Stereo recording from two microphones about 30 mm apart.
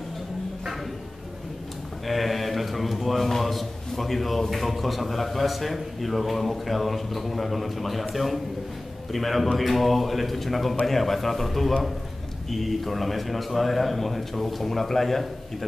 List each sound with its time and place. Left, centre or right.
2.0 s mantra: centre
3.2 s a man's voice: centre